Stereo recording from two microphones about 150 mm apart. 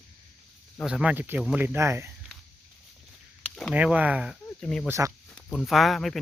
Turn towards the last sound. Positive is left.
turn(degrees=0)  # may be behind; listen again after turning